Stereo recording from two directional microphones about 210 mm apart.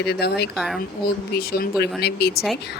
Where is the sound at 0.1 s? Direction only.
50° left (ahead or behind).